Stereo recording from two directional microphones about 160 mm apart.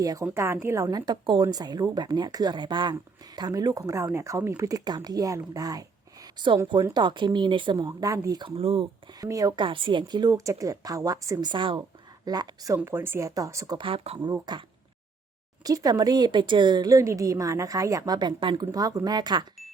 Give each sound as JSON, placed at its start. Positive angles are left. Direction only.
{"t": 0.0, "sound": "a woman's voice", "side_deg": -20}
{"t": 9.2, "sound": "a woman's voice", "side_deg": -20}
{"t": 9.6, "sound": "a woman's voice", "side_deg": -30}
{"t": 13.7, "sound": "speech", "side_deg": -35}
{"t": 14.2, "sound": "a woman's voice", "side_deg": -25}
{"t": 15.6, "sound": "a woman's voice", "side_deg": -25}